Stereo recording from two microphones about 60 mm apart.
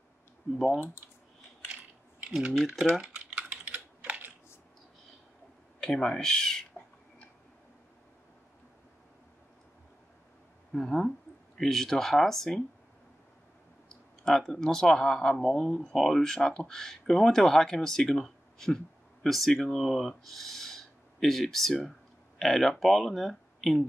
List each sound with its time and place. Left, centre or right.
2.5 s speech: centre
3.0 s typing: centre
5.8 s speech: centre
10.7 s speech: centre
14.2 s speech: centre